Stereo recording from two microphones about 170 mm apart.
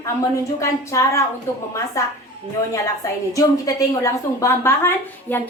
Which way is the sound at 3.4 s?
20° left (ahead or behind).